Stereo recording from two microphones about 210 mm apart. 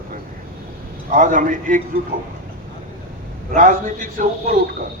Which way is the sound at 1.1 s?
40° right (ahead or behind).